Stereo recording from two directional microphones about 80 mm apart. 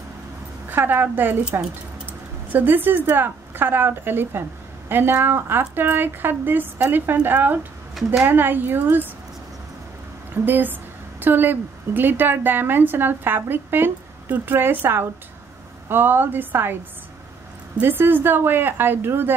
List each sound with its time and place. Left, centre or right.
0.7 s a woman's voice: right
2.5 s a woman's voice: right
10.3 s a woman's voice: right
17.7 s a woman's voice: right